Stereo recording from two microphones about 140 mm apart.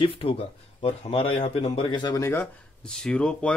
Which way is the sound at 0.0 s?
40° left (ahead or behind).